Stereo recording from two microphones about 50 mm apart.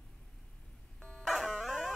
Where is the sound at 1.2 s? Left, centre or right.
Centre.